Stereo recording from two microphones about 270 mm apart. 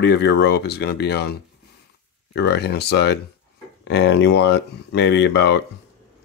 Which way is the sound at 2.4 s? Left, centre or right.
Left.